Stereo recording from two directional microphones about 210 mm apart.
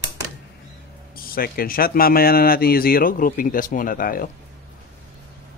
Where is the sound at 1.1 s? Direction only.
45° left (ahead or behind).